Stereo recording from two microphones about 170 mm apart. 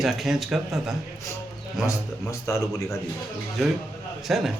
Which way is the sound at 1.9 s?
20° left (ahead or behind).